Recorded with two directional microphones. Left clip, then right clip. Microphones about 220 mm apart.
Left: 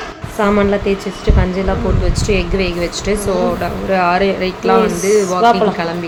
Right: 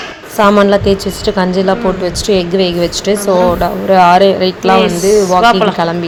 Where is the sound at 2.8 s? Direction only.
20° right (ahead or behind).